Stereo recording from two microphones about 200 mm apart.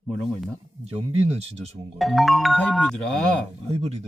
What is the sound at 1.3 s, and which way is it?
Speech, 30° right (ahead or behind).